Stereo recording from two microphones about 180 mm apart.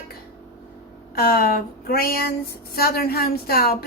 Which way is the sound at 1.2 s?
55° left (ahead or behind).